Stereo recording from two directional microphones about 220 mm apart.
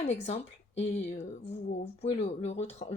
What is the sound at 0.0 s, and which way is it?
Speech, 30° left (ahead or behind).